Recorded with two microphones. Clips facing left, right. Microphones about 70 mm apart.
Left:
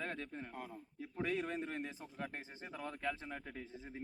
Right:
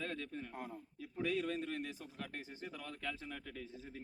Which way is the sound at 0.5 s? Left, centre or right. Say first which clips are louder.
Right 1 dB; centre.